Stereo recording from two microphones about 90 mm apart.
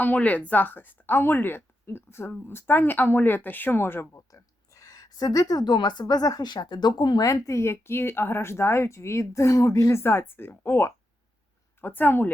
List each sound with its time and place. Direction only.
0.0 s speech: 15° left (ahead or behind)
4.3 s speech: 40° left (ahead or behind); by 7.3 s 55° left (ahead or behind)
7.3 s speech: 35° left (ahead or behind)